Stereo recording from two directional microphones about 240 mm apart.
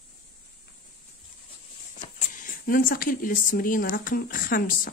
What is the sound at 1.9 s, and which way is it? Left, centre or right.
Speech, left.